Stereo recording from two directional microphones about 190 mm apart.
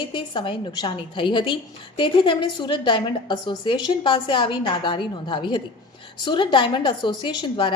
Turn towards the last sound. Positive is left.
turn(degrees=25)  # may be behind; listen again after turning